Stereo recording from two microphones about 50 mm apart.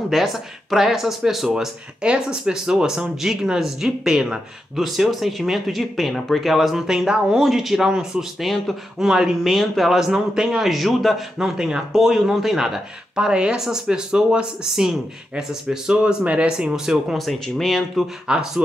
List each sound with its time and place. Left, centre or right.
0.1 s speech: centre
1.5 s speech: centre
4.7 s speech: centre
9.5 s speech: centre
11.3 s speech: centre
17.2 s speech: centre
18.2 s speech: centre